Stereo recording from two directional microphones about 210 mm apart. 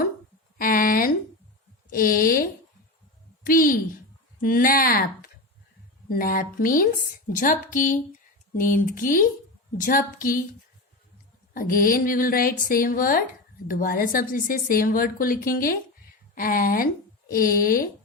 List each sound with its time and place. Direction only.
0.6 s a sound: 45° left (ahead or behind)
4.4 s a woman's voice: 40° left (ahead or behind)
11.5 s a woman's voice: 40° left (ahead or behind)